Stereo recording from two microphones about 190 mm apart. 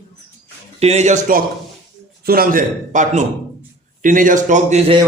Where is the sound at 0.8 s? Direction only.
35° right (ahead or behind).